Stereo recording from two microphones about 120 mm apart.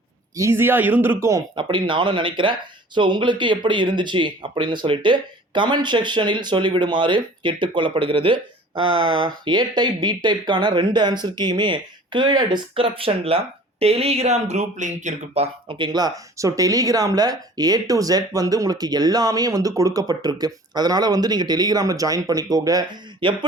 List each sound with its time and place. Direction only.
0.3 s speech: 20° right (ahead or behind)
1.5 s speech: 40° right (ahead or behind); by 15.4 s 80° right
15.7 s speech: 40° right (ahead or behind)